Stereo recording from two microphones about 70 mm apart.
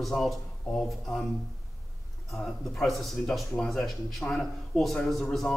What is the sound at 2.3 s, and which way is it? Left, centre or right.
Speech, centre.